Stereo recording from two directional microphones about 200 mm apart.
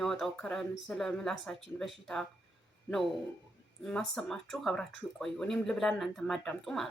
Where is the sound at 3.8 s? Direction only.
5° left (ahead or behind).